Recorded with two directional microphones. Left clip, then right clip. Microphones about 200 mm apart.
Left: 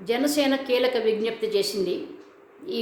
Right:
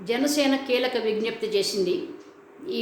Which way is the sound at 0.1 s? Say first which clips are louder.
Even; 10° left (ahead or behind).